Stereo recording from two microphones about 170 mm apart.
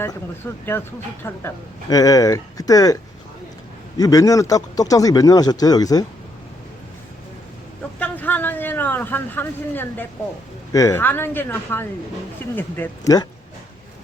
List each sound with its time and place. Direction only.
0.4 s speech: 15° left (ahead or behind)
7.9 s speech: 10° left (ahead or behind)